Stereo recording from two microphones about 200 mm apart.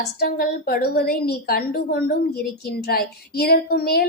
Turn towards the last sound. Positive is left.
turn(degrees=50)  # may be behind; listen again after turning